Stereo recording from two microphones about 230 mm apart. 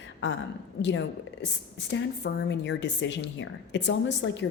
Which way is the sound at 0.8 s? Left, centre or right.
Left.